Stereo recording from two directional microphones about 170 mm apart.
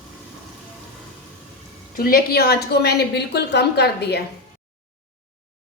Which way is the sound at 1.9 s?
60° left (ahead or behind).